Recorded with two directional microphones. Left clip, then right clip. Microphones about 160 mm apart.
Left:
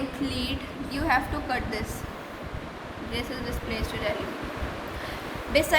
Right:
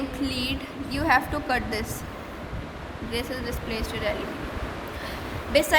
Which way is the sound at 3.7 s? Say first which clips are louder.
Right 1 dB; 25° right (ahead or behind).